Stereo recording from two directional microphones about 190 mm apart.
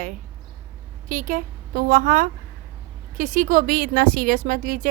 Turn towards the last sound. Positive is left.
turn(degrees=-45)  # may be behind; listen again after turning